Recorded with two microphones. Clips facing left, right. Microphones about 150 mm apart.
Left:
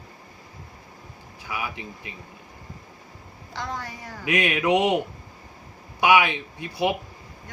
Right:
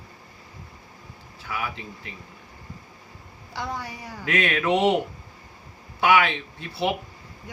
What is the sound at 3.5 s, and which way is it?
Speech, 10° right (ahead or behind).